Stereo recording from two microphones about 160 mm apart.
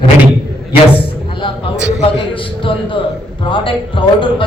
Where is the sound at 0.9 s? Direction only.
30° left (ahead or behind).